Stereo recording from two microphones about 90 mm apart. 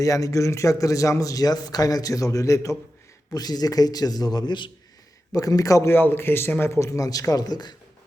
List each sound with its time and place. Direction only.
0.0 s a man's voice: 40° left (ahead or behind); by 4.7 s 60° left (ahead or behind)
5.3 s a man's voice: 40° left (ahead or behind)
5.9 s a man's voice: 25° left (ahead or behind); by 7.8 s 50° left (ahead or behind)